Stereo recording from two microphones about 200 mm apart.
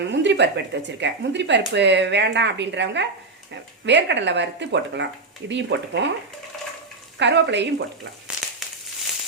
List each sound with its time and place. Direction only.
0.0 s speech: 60° right (ahead or behind)
7.2 s speech: 60° right (ahead or behind)